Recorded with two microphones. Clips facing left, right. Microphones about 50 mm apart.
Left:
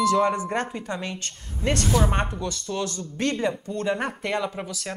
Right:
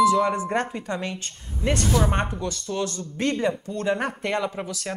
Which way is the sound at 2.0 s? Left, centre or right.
Centre.